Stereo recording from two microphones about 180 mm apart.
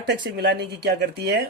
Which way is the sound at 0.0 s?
60° right (ahead or behind).